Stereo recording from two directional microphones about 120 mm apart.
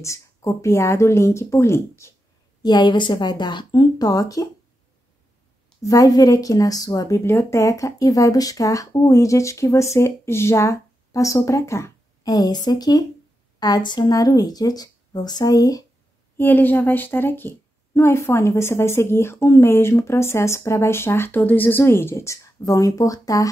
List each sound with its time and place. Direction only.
0.0 s speech: 25° left (ahead or behind)
2.6 s speech: 35° left (ahead or behind)
5.8 s speech: 30° left (ahead or behind)
16.3 s speech: 15° left (ahead or behind)